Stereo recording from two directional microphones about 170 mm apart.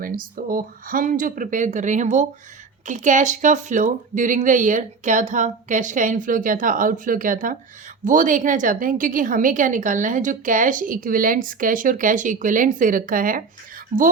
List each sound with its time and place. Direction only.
0.0 s a woman's voice: 55° right (ahead or behind)